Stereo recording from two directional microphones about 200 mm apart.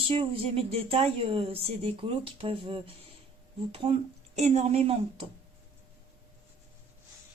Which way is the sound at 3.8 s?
25° right (ahead or behind).